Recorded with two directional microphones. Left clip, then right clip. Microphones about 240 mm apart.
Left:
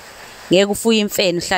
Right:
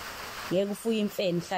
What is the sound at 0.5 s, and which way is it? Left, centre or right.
Speech, left.